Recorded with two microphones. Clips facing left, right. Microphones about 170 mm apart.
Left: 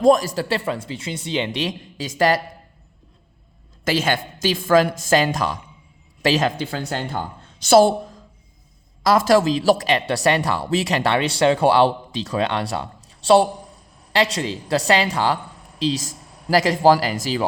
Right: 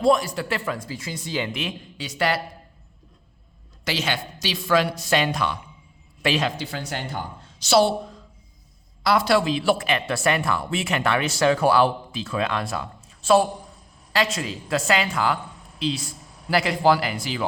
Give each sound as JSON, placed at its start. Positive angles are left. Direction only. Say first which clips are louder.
{"t": 0.0, "sound": "speech", "louder": "left 4 dB", "side_deg": 40}
{"t": 1.6, "sound": "speech", "louder": "left 5 dB", "side_deg": 40}
{"t": 3.8, "sound": "a woman's voice", "louder": "left 6 dB", "side_deg": 50}
{"t": 6.6, "sound": "a woman's voice", "louder": "left 5 dB", "side_deg": 55}